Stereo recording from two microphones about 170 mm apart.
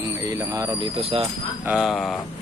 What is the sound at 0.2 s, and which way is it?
Speech, 20° right (ahead or behind).